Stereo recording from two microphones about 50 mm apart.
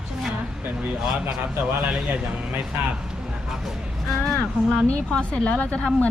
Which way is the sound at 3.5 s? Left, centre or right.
Centre.